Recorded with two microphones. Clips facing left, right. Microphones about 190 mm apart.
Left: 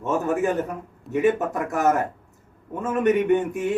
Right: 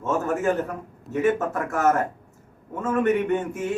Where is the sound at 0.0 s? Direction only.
15° left (ahead or behind).